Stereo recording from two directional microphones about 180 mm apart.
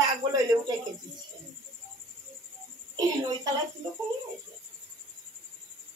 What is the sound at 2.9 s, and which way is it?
Speech, 20° right (ahead or behind).